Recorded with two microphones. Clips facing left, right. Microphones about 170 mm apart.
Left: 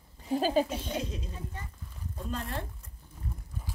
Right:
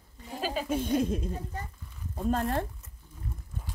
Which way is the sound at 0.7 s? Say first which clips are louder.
Right 8 dB; 50° right (ahead or behind).